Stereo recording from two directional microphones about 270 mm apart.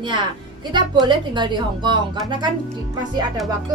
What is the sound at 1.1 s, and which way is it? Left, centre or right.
Speech, centre.